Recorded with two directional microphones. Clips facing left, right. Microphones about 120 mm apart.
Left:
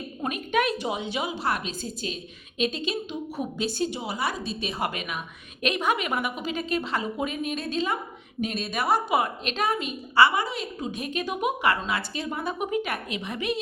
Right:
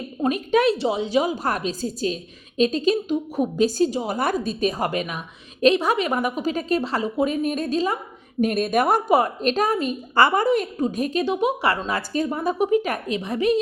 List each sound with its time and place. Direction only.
0.2 s a woman's voice: 35° right (ahead or behind)
8.4 s a woman's voice: 50° right (ahead or behind)